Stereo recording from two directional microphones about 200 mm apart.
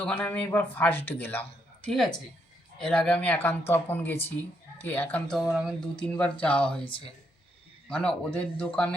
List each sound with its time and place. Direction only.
0.0 s speech: 5° left (ahead or behind)
6.8 s speech: 25° left (ahead or behind)
7.9 s speech: 5° left (ahead or behind)